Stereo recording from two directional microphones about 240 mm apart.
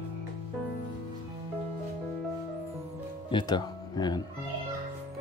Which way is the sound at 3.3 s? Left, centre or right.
Centre.